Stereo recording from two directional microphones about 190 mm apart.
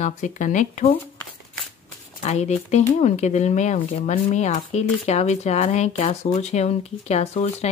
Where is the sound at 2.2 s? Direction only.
35° left (ahead or behind).